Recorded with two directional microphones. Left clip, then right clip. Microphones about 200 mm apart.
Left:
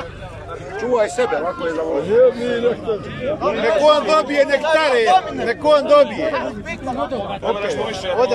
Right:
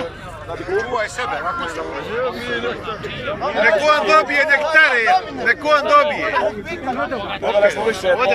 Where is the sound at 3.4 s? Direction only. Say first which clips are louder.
Even; 20° left (ahead or behind).